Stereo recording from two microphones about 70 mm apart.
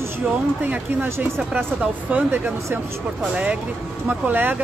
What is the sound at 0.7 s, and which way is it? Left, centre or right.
Speech, right.